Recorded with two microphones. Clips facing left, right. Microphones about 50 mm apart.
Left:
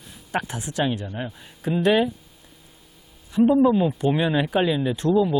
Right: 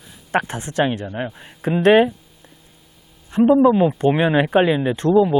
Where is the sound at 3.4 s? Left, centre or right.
Centre.